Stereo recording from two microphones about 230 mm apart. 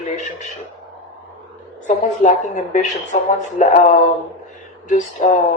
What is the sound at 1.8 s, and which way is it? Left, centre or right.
Speech, left.